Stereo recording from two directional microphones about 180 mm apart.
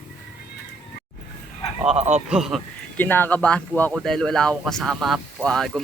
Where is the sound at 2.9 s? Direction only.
10° left (ahead or behind).